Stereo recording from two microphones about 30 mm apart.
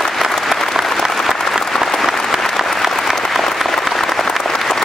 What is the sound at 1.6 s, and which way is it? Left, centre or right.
Applause, centre.